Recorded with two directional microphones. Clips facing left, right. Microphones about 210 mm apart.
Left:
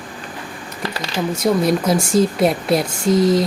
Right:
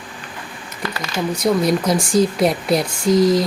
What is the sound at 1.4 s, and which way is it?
Speech, centre (ahead or behind).